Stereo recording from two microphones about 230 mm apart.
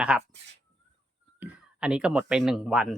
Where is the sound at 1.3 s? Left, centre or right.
Centre.